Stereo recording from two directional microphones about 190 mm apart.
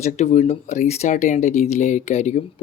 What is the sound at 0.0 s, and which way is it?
Speech, 35° left (ahead or behind).